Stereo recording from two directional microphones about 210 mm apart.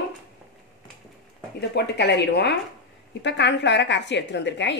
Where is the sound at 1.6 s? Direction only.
55° left (ahead or behind).